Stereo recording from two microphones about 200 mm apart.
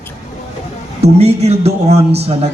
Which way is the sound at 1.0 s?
30° right (ahead or behind).